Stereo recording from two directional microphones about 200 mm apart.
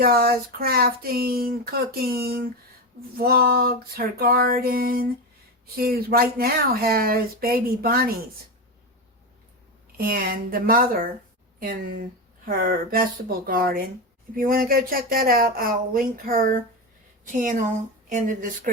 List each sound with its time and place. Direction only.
0.0 s speech: 50° right (ahead or behind)
10.0 s a woman's voice: 45° right (ahead or behind)